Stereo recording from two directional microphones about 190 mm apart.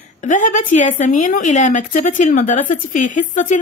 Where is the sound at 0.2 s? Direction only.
40° left (ahead or behind).